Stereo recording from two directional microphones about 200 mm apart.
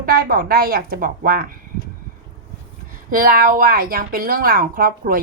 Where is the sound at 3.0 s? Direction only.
45° right (ahead or behind).